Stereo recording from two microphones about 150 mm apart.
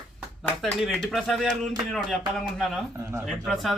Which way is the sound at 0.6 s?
Centre (ahead or behind).